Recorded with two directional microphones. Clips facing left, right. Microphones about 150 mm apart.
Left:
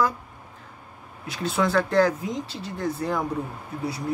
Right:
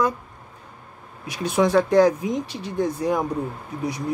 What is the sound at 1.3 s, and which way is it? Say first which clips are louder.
Speech: right 4 dB; 15° right (ahead or behind).